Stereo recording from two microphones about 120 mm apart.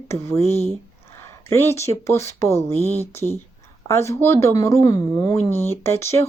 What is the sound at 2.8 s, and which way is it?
Speech, 25° right (ahead or behind).